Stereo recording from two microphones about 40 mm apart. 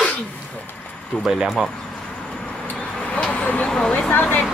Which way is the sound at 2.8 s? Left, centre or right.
Left.